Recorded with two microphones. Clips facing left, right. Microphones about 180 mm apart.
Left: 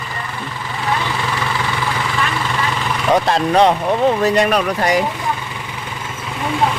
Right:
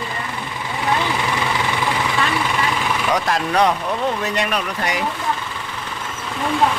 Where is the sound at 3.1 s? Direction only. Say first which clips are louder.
Left 7 dB; 25° left (ahead or behind).